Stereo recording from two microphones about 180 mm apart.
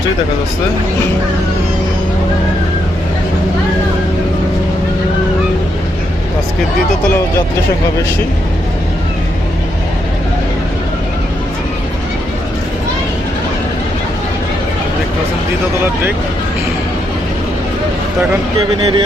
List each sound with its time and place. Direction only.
18.8 s speech: 25° right (ahead or behind)